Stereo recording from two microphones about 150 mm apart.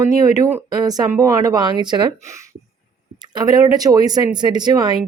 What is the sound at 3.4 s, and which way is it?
Speech, 25° right (ahead or behind).